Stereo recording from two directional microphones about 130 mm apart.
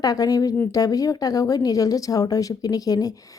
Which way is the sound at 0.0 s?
30° left (ahead or behind).